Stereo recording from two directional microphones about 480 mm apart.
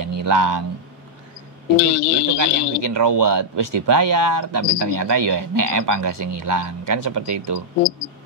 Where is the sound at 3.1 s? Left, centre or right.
Right.